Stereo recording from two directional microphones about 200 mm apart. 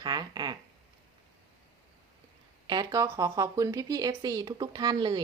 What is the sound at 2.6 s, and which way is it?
Speech, 20° right (ahead or behind).